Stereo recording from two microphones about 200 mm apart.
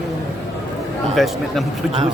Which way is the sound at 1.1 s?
Centre (ahead or behind).